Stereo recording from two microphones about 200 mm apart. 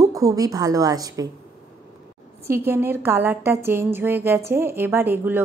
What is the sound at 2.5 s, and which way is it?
A woman's voice, 10° right (ahead or behind).